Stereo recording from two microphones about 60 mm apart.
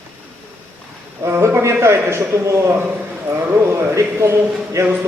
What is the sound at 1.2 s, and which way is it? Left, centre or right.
A man's voice, right.